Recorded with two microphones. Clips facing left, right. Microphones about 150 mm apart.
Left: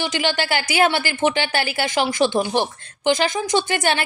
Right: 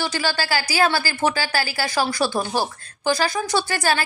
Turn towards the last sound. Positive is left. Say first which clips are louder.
# left 2 dB
turn(degrees=20)  # may be behind; listen again after turning